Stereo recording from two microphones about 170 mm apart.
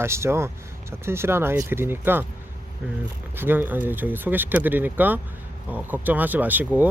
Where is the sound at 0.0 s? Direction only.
15° right (ahead or behind).